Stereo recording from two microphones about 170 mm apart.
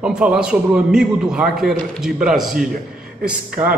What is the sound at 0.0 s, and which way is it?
A man's voice, 5° right (ahead or behind).